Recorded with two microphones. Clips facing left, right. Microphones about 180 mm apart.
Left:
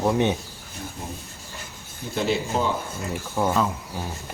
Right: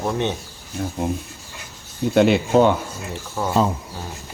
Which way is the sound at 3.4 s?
15° left (ahead or behind).